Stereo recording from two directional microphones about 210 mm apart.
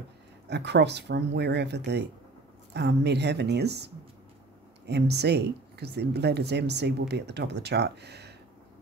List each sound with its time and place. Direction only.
0.5 s speech: 55° right (ahead or behind)